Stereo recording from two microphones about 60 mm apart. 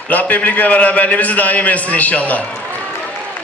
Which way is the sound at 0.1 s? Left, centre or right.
Left.